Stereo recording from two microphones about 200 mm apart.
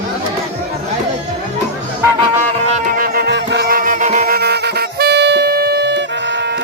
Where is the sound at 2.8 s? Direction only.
45° right (ahead or behind).